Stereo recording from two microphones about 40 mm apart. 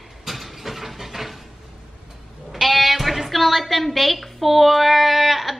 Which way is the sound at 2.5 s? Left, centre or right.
Centre.